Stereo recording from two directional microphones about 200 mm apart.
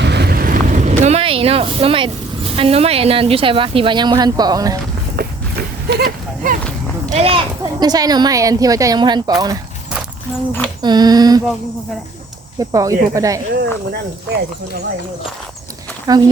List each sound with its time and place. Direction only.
0.0 s speech: 55° right (ahead or behind); by 4.8 s 20° right (ahead or behind)
5.1 s horse: 50° right (ahead or behind)
7.1 s speech: 30° right (ahead or behind)
10.8 s speech: 20° right (ahead or behind)
12.5 s speech: 15° right (ahead or behind)
16.1 s speech: 20° right (ahead or behind)